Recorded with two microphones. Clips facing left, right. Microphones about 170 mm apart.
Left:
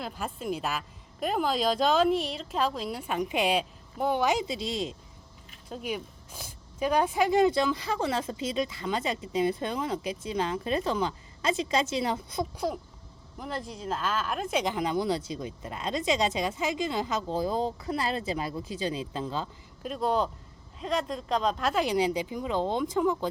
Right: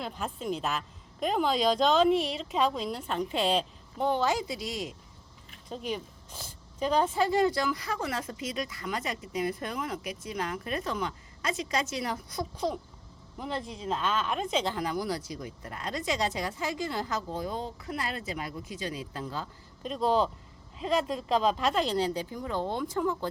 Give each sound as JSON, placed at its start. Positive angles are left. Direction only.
{"t": 0.0, "sound": "a woman's voice", "side_deg": 5}
{"t": 5.6, "sound": "speech", "side_deg": 5}
{"t": 12.5, "sound": "speech", "side_deg": 5}
{"t": 19.8, "sound": "a woman's voice", "side_deg": 0}